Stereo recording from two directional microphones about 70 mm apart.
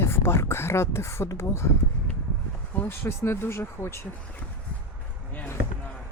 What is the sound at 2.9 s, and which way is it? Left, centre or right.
Speech, left.